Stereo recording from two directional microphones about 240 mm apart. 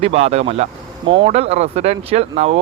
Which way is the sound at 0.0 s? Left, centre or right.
Right.